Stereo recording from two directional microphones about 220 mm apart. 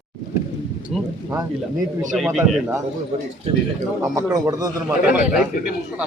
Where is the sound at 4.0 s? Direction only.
15° right (ahead or behind).